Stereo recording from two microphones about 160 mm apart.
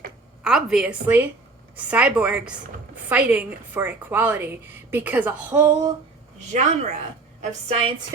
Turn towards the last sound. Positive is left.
turn(degrees=-40)  # may be behind; listen again after turning